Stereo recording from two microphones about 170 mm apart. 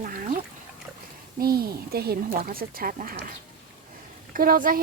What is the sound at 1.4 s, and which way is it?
Speech, 65° right (ahead or behind).